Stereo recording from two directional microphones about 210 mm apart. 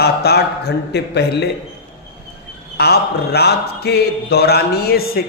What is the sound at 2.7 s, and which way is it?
A man's voice, 50° left (ahead or behind).